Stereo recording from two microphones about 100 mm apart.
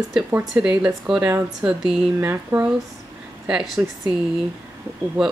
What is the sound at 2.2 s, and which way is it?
Speech, 25° right (ahead or behind).